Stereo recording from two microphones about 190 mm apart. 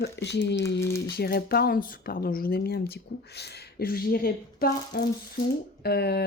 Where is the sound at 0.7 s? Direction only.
15° left (ahead or behind).